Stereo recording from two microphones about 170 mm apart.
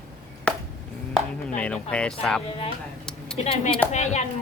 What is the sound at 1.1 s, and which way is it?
Chopping, 5° left (ahead or behind).